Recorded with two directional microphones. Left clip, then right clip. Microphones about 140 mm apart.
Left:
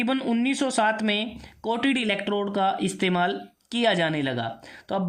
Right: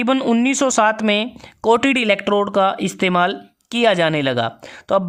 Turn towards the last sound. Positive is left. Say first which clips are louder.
# right 11 dB
turn(degrees=-50)  # may be behind; listen again after turning